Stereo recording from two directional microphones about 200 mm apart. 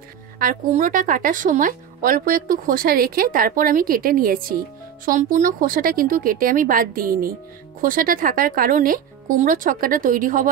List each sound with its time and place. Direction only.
0.4 s a woman's voice: 45° right (ahead or behind)